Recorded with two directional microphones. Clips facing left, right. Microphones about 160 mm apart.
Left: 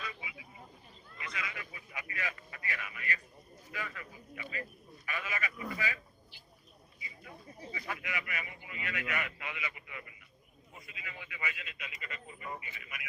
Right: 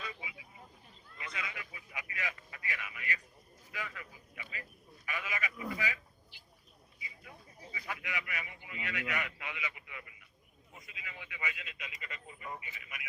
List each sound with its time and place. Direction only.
0.0 s a sound: 25° right (ahead or behind)
1.5 s a man's voice: 15° right (ahead or behind)
7.8 s a man's voice: 15° right (ahead or behind)
10.8 s speech: 20° right (ahead or behind)